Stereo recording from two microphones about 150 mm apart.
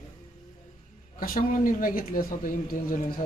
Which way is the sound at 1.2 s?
70° left (ahead or behind).